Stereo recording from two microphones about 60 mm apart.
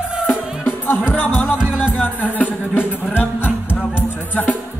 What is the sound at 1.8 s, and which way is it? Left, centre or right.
Music, left.